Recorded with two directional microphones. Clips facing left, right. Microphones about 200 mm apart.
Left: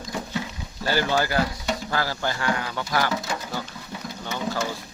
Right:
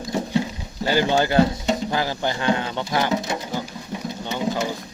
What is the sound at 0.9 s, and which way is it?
Speech, 20° right (ahead or behind).